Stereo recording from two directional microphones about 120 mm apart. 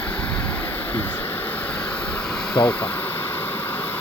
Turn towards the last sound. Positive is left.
turn(degrees=15)  # may be behind; listen again after turning